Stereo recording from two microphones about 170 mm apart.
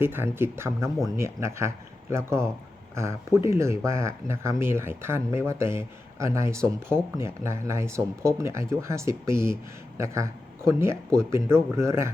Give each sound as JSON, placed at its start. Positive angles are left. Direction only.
{"t": 0.0, "sound": "speech", "side_deg": -15}